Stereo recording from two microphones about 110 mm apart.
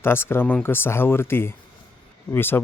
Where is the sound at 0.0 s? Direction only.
20° left (ahead or behind).